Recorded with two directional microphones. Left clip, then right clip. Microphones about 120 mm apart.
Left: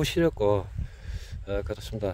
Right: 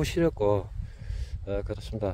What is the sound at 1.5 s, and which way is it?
Speech, 25° left (ahead or behind).